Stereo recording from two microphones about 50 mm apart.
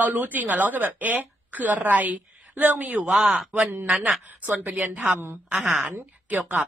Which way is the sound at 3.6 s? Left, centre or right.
Right.